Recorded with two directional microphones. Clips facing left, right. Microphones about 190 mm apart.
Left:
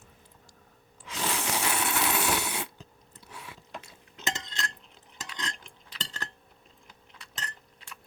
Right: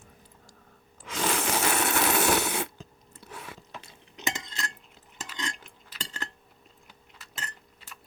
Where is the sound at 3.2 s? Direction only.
45° right (ahead or behind).